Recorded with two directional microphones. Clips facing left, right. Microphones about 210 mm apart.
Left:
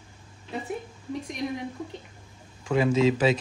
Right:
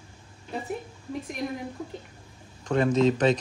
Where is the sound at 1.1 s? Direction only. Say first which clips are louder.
Left 1 dB; centre (ahead or behind).